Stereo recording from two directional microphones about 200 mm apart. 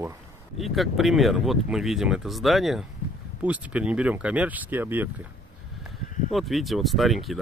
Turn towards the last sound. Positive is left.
turn(degrees=0)  # may be behind; listen again after turning